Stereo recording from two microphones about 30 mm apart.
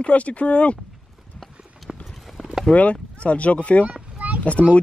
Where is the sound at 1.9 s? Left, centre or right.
Centre.